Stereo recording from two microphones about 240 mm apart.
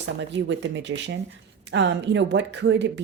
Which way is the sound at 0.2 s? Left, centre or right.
Right.